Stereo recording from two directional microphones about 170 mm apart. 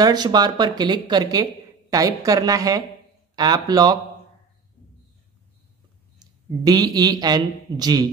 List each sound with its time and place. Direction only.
0.0 s speech: 25° right (ahead or behind)
6.6 s speech: 25° right (ahead or behind)